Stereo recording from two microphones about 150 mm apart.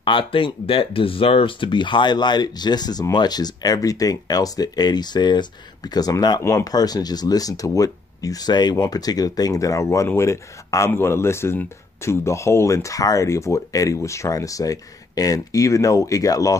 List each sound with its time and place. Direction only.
0.0 s speech: 35° left (ahead or behind)